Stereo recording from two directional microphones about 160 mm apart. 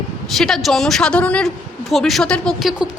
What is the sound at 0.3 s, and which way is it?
A woman's voice, centre (ahead or behind).